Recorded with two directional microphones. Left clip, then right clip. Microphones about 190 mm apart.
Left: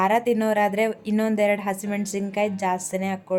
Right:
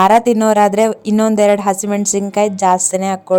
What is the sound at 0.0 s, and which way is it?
Speech, 45° right (ahead or behind).